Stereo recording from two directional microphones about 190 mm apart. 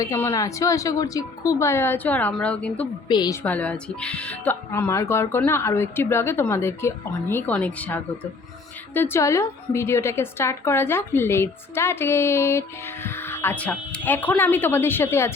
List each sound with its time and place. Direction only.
0.0 s a woman's voice: 15° left (ahead or behind)
3.1 s a woman's voice: 20° left (ahead or behind)
3.4 s a woman's voice: 5° left (ahead or behind)